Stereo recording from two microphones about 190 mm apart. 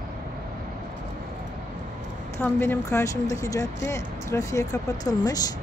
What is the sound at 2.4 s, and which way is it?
Speech, 10° left (ahead or behind).